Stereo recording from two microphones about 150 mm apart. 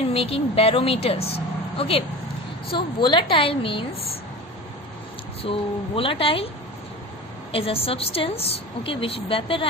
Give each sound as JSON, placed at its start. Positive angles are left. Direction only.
{"t": 0.0, "sound": "a woman's voice", "side_deg": 40}
{"t": 5.4, "sound": "a woman's voice", "side_deg": 40}
{"t": 7.5, "sound": "a woman's voice", "side_deg": 40}